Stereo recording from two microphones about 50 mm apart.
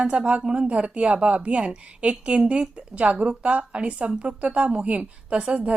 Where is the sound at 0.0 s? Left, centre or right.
Right.